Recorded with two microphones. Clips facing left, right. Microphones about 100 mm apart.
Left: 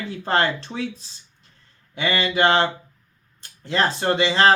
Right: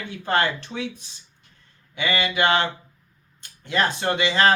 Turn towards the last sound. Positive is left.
turn(degrees=30)  # may be behind; listen again after turning